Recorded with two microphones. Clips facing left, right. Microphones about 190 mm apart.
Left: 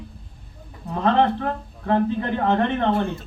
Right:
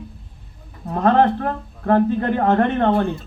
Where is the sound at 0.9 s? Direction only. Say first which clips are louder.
Right 3 dB; 50° right (ahead or behind).